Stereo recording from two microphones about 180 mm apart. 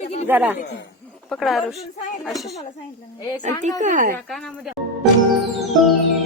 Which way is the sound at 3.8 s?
45° right (ahead or behind).